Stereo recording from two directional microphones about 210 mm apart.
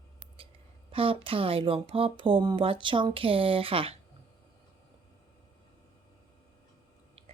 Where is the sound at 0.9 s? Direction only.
25° right (ahead or behind).